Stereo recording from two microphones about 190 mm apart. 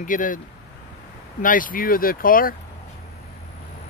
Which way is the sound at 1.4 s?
45° left (ahead or behind).